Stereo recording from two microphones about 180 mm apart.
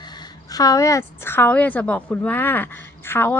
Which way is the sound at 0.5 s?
20° left (ahead or behind).